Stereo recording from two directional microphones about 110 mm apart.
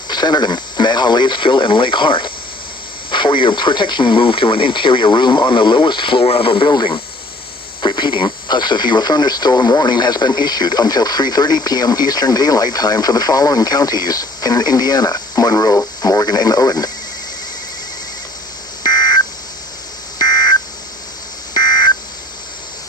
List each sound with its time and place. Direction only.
0.1 s speech: 40° left (ahead or behind)
18.8 s telephone dialing: 40° left (ahead or behind)